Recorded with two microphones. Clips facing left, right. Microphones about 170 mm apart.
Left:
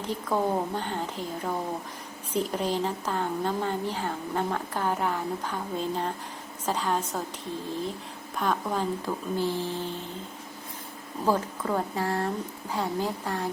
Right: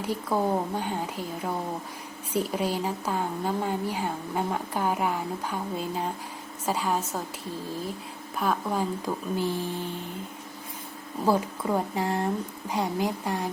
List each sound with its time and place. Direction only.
0.0 s a woman's voice: 10° right (ahead or behind)
8.4 s a woman's voice: 5° right (ahead or behind)
11.3 s a woman's voice: 10° right (ahead or behind)